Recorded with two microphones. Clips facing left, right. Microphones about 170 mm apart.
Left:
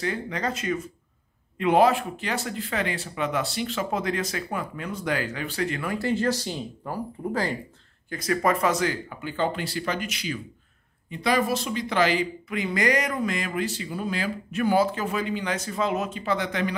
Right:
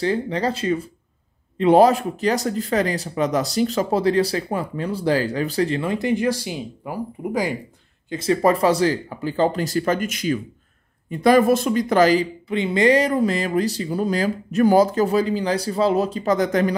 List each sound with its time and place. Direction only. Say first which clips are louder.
0.0 s speech: right 7 dB; 30° right (ahead or behind); by 7.5 s 10° right (ahead or behind)
8.1 s speech: right 6 dB; 25° right (ahead or behind); by 16.7 s 40° right (ahead or behind)